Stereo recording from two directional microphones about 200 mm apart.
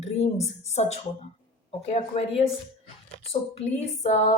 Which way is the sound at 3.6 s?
35° left (ahead or behind).